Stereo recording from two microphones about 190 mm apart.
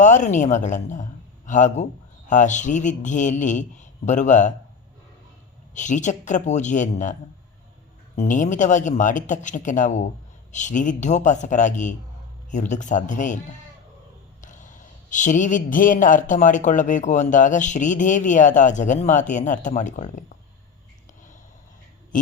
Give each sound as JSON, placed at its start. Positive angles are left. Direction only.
{"t": 0.0, "sound": "speech", "side_deg": 40}
{"t": 5.7, "sound": "speech", "side_deg": 40}
{"t": 14.4, "sound": "speech", "side_deg": 40}
{"t": 22.1, "sound": "speech", "side_deg": 45}